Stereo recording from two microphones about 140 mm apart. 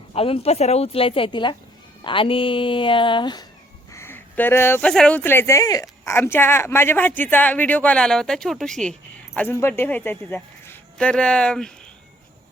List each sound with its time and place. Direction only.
0.1 s a woman's voice: 45° left (ahead or behind)
3.9 s a sound: 15° left (ahead or behind)
4.9 s speech: 5° left (ahead or behind)